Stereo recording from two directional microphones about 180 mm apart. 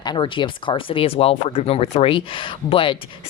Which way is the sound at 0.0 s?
25° left (ahead or behind).